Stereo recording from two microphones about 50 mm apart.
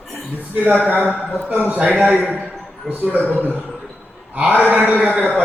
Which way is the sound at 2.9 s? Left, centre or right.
Right.